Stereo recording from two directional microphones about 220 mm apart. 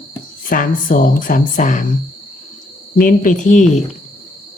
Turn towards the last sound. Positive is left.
turn(degrees=35)  # may be behind; listen again after turning